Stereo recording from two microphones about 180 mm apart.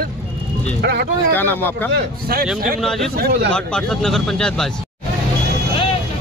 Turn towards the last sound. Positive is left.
turn(degrees=5)  # may be behind; listen again after turning